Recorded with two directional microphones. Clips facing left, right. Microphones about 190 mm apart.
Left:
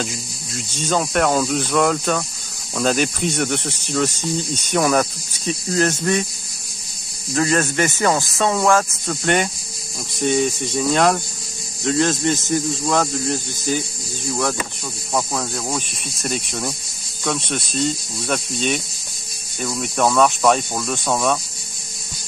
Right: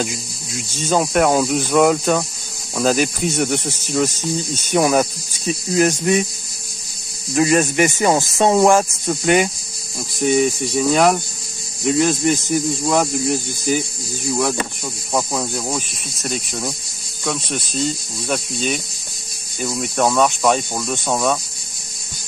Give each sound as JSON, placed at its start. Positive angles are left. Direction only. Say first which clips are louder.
{"t": 0.7, "sound": "speech", "louder": "right 3 dB", "side_deg": -5}
{"t": 4.7, "sound": "speech", "louder": "right 2 dB", "side_deg": -15}
{"t": 7.3, "sound": "speech", "louder": "right 3 dB", "side_deg": -15}
{"t": 9.2, "sound": "speech", "louder": "right 3 dB", "side_deg": -5}
{"t": 15.1, "sound": "speech", "louder": "right 2 dB", "side_deg": -10}